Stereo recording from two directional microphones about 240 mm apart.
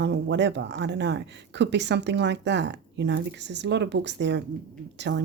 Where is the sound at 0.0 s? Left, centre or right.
Right.